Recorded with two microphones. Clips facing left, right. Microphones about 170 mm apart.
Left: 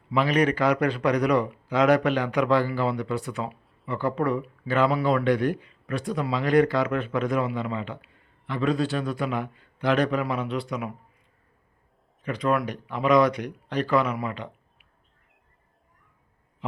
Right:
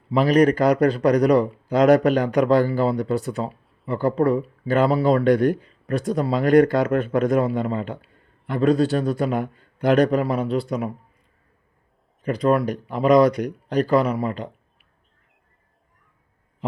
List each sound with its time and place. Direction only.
0.1 s a man's voice: 40° right (ahead or behind)
12.2 s a man's voice: 35° right (ahead or behind)